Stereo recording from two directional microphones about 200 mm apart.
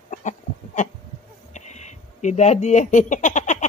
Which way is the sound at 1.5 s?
35° left (ahead or behind).